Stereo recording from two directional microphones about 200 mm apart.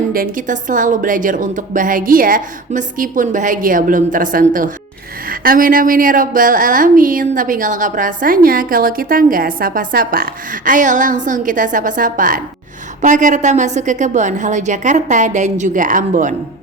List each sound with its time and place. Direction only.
0.1 s a woman's voice: 45° right (ahead or behind)